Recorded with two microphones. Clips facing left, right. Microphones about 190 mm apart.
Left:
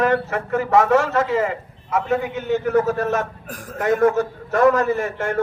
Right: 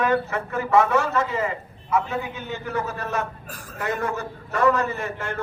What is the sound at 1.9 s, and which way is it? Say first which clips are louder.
Speech: left 4 dB; 45° left (ahead or behind).